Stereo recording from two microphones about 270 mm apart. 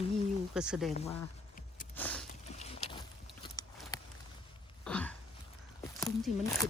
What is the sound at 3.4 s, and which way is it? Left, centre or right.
Clip-clop, centre.